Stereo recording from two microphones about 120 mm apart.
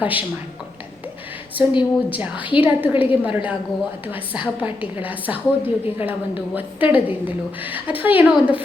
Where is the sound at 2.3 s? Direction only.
45° left (ahead or behind).